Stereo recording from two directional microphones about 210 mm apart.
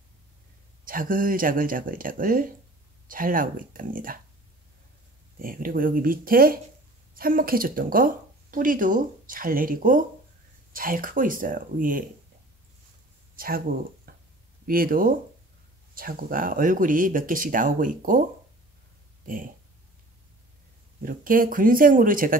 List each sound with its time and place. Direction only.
0.8 s speech: 40° right (ahead or behind)
5.4 s speech: 40° right (ahead or behind)
13.4 s speech: 45° right (ahead or behind)
19.2 s speech: 40° right (ahead or behind)
21.0 s speech: 40° right (ahead or behind)